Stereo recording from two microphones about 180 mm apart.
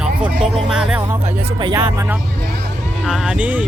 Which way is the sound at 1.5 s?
25° right (ahead or behind).